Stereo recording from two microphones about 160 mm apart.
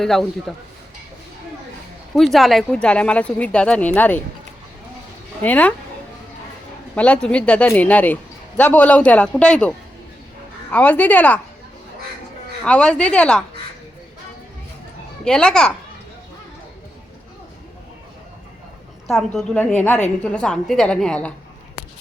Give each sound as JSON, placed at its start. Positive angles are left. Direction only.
{"t": 0.0, "sound": "a woman's voice", "side_deg": 0}
{"t": 2.1, "sound": "a man's voice", "side_deg": 0}
{"t": 5.4, "sound": "a man's voice", "side_deg": 10}
{"t": 6.9, "sound": "a man's voice", "side_deg": 5}
{"t": 12.6, "sound": "a man's voice", "side_deg": 5}
{"t": 15.2, "sound": "a woman's voice", "side_deg": 5}
{"t": 19.0, "sound": "a woman's voice", "side_deg": 0}